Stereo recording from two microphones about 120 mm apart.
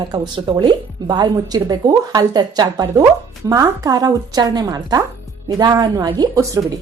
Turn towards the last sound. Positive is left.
turn(degrees=-30)  # may be behind; listen again after turning